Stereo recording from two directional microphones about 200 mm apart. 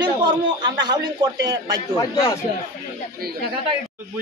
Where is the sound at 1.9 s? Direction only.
25° left (ahead or behind).